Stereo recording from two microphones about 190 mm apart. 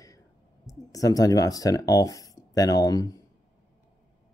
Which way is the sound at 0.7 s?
20° left (ahead or behind).